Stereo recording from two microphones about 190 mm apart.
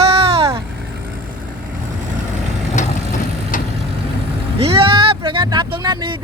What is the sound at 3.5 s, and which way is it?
Vehicle, 45° left (ahead or behind).